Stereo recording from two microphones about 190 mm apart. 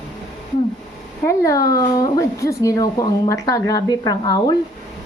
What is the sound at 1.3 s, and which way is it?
Speech, 15° left (ahead or behind).